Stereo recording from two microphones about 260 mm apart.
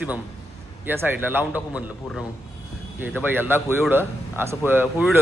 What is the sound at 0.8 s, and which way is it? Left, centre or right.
A man's voice, centre.